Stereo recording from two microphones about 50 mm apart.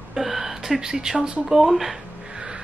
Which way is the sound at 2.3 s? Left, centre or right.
Right.